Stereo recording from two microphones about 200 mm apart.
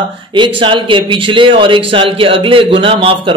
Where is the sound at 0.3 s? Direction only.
25° right (ahead or behind).